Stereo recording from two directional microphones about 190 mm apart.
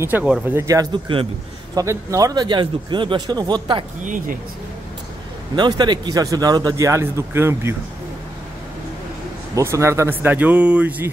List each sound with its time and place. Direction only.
0.0 s a man's voice: 5° right (ahead or behind); by 3.8 s 25° right (ahead or behind)
4.0 s speech: 45° right (ahead or behind)
5.6 s a man's voice: 20° right (ahead or behind)
9.6 s speech: 15° right (ahead or behind)